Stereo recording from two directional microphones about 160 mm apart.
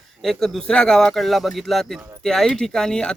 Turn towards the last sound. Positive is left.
turn(degrees=5)  # may be behind; listen again after turning